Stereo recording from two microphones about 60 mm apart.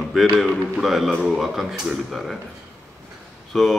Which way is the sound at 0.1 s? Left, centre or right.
Centre.